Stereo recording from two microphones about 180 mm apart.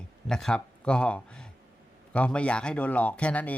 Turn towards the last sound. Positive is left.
turn(degrees=10)  # may be behind; listen again after turning